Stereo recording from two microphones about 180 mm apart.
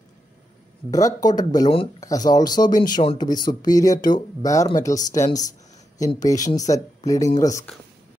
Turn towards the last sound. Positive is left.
turn(degrees=15)  # may be behind; listen again after turning